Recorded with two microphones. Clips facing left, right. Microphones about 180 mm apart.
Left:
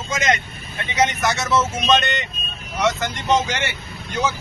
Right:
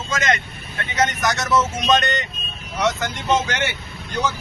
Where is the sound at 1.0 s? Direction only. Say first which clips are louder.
Left 1 dB; 5° left (ahead or behind).